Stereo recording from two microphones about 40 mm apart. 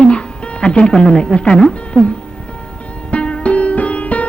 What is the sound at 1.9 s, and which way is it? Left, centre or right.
Music, left.